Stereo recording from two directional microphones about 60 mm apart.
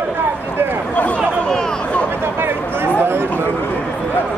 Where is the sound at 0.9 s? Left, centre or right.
Left.